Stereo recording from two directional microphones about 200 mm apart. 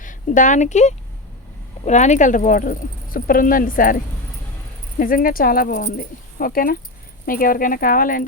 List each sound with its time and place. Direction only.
0.0 s a woman's voice: 40° left (ahead or behind)
4.9 s speech: 45° left (ahead or behind)